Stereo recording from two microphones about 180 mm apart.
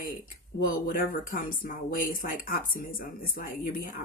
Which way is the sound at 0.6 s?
50° left (ahead or behind).